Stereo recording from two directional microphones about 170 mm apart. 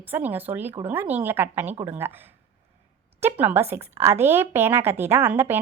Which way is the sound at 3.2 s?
10° right (ahead or behind).